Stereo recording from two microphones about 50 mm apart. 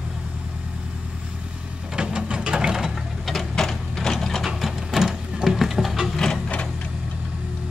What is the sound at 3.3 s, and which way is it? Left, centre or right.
Printer, centre.